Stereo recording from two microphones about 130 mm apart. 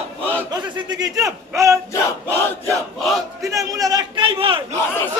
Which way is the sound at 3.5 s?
25° right (ahead or behind).